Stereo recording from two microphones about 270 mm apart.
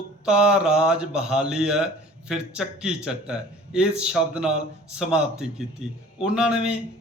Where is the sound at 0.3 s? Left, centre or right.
Centre.